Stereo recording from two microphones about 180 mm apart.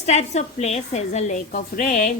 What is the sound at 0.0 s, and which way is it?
A woman's voice, 40° left (ahead or behind).